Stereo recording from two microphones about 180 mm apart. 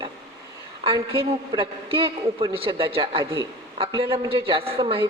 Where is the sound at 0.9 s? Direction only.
30° right (ahead or behind).